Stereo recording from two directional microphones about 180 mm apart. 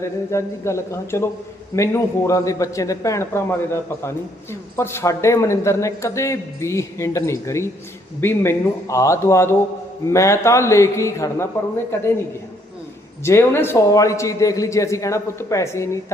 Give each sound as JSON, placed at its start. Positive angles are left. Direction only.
{"t": 0.0, "sound": "speech", "side_deg": 15}
{"t": 13.2, "sound": "speech", "side_deg": 15}